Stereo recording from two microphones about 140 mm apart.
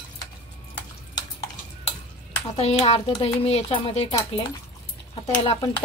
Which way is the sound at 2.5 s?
50° left (ahead or behind).